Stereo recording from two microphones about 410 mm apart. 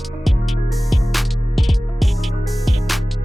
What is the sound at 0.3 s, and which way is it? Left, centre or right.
Music, centre.